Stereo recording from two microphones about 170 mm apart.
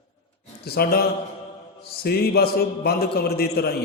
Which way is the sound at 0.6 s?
65° left (ahead or behind).